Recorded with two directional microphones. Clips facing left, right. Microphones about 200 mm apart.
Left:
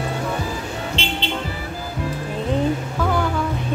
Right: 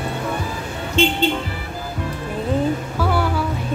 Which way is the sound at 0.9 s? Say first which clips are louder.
Right 12 dB; 50° right (ahead or behind).